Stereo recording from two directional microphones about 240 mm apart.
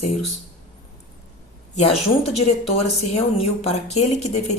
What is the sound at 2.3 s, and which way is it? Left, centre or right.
A woman's voice, left.